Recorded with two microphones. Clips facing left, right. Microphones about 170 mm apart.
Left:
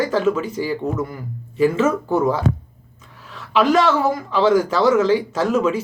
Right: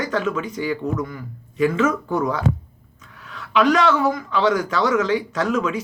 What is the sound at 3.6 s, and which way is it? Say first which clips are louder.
A man's voice: left 1 dB; 30° left (ahead or behind).